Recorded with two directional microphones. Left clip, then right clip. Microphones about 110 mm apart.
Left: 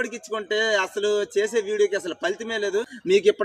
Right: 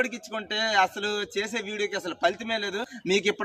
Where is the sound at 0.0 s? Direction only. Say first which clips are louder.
Left 1 dB; 40° right (ahead or behind).